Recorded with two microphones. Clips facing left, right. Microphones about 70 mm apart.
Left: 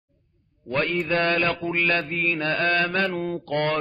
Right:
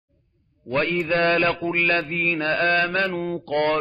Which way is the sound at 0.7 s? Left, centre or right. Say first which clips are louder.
Right 2 dB; centre.